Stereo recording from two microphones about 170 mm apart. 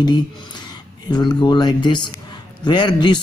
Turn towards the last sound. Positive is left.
turn(degrees=25)  # may be behind; listen again after turning